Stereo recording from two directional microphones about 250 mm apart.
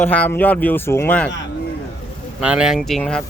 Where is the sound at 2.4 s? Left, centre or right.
Centre.